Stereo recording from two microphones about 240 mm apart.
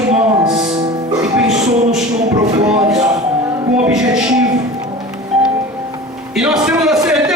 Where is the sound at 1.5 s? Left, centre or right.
Right.